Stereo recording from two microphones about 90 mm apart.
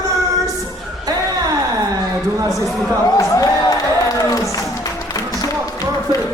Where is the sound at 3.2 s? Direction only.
35° left (ahead or behind).